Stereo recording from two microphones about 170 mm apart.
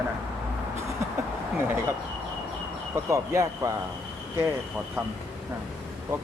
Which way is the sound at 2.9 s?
15° right (ahead or behind).